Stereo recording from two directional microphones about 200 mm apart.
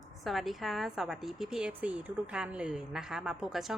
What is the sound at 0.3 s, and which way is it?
A woman's voice, centre (ahead or behind).